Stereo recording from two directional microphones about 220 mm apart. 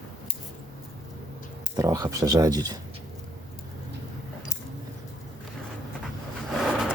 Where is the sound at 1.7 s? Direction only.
15° right (ahead or behind).